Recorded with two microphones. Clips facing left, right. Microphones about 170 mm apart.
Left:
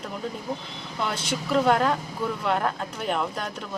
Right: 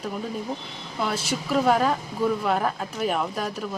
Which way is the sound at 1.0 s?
5° right (ahead or behind).